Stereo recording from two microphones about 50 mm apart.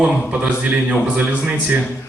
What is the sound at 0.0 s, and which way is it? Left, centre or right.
Speech, right.